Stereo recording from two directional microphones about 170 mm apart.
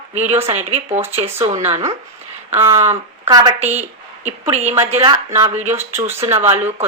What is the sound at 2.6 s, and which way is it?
Speech, 15° right (ahead or behind).